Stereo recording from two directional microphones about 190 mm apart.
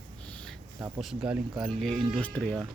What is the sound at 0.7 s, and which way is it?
Speech, 15° right (ahead or behind).